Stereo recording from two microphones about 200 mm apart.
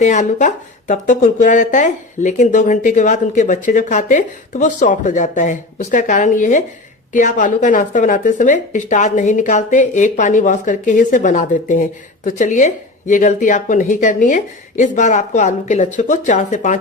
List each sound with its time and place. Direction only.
0.0 s speech: 35° left (ahead or behind)